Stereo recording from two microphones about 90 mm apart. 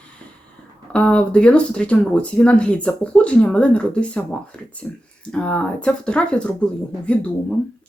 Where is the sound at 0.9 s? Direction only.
10° left (ahead or behind).